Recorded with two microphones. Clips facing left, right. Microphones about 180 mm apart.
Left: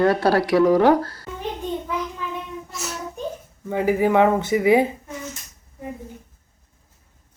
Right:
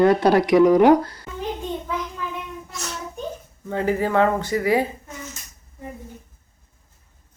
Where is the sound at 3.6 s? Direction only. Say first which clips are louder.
Left 3 dB; 10° left (ahead or behind).